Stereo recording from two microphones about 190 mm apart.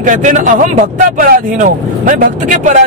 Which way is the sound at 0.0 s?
45° right (ahead or behind).